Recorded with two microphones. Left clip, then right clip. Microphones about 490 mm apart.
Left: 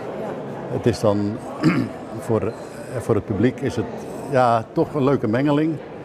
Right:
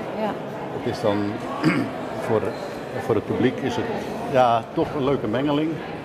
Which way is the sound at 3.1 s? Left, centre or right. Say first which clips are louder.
Left 1 dB; left.